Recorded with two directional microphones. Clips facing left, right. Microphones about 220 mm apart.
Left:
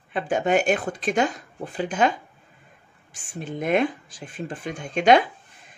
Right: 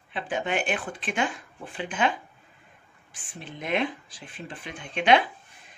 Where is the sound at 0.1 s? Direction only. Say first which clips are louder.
Left 7 dB; 45° left (ahead or behind).